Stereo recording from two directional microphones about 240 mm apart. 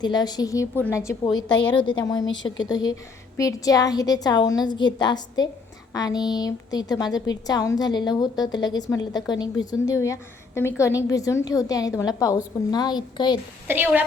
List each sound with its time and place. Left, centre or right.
0.0 s a woman's voice: centre
13.7 s a woman's voice: centre